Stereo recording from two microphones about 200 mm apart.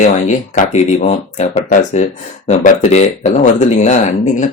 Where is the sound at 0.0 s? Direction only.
40° left (ahead or behind).